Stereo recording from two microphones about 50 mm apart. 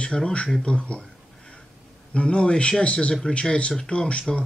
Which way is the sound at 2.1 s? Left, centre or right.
Left.